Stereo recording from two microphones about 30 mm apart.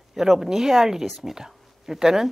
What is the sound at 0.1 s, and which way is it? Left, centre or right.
A woman's voice, centre.